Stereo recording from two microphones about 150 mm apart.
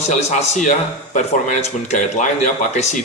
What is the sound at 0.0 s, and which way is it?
A man's voice, 50° left (ahead or behind).